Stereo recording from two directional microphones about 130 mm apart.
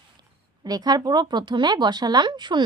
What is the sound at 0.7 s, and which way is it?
Speech, 30° right (ahead or behind).